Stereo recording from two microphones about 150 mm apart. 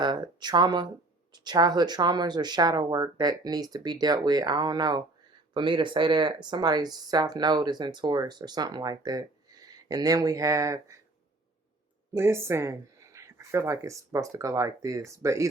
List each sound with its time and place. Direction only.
0.0 s speech: 30° right (ahead or behind)
12.1 s speech: 15° right (ahead or behind)